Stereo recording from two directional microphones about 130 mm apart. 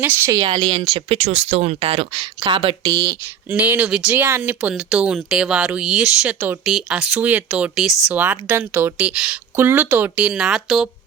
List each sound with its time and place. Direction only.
0.0 s speech: 20° right (ahead or behind)
0.3 s speech: 35° right (ahead or behind)
1.2 s speech: 55° right (ahead or behind)
2.8 s speech: 25° right (ahead or behind)
3.5 s speech: 10° right (ahead or behind)